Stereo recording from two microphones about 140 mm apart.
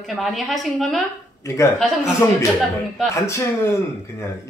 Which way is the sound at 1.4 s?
20° left (ahead or behind).